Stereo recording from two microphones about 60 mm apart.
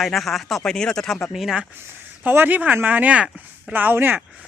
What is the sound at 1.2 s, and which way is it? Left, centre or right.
Speech, centre.